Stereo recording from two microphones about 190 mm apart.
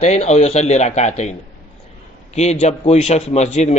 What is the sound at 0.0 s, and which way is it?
A man's voice, 35° left (ahead or behind).